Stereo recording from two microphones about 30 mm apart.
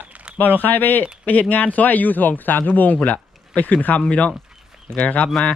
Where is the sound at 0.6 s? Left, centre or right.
Left.